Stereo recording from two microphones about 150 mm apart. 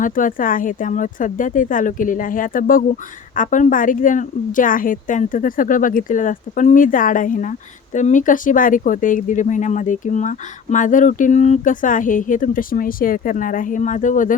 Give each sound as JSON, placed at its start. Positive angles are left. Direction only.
{"t": 0.0, "sound": "speech", "side_deg": 60}